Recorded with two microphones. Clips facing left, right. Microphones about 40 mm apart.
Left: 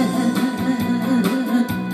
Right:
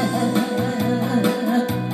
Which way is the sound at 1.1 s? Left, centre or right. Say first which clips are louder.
Left 1 dB; right.